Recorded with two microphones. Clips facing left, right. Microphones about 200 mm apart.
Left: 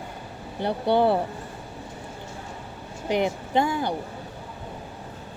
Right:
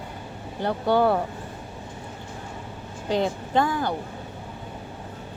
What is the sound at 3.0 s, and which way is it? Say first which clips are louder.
Speech: even; 15° left (ahead or behind).